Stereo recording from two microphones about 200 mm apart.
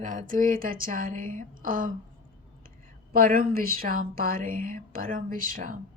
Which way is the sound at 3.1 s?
45° right (ahead or behind).